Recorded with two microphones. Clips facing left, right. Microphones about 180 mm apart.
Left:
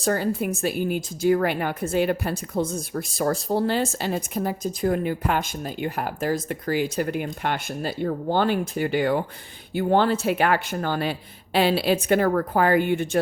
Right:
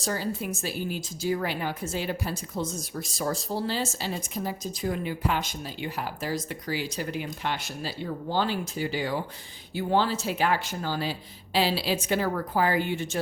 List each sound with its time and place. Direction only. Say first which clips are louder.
0.0 s speech: left 7 dB; 55° left (ahead or behind)